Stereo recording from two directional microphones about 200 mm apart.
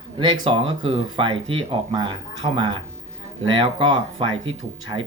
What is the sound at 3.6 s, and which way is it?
Speech, 25° right (ahead or behind).